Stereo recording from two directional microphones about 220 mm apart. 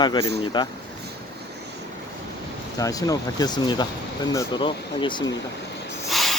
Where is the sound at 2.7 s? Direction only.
15° left (ahead or behind).